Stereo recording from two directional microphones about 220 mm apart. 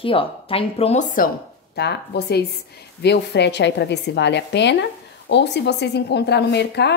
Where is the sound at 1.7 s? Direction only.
50° left (ahead or behind).